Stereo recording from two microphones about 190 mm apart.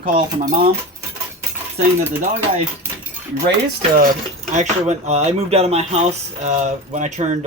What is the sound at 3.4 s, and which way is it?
Speech, 60° right (ahead or behind).